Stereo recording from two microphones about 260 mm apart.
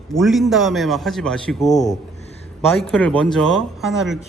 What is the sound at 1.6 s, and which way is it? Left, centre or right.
Speech, left.